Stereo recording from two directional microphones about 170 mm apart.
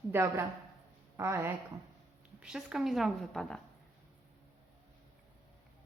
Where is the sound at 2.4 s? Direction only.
5° right (ahead or behind).